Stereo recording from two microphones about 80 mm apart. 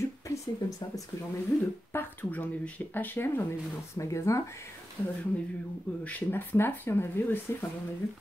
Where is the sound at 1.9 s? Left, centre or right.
Left.